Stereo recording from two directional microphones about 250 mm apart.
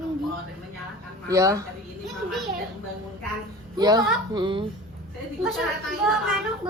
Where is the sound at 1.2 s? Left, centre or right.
Centre.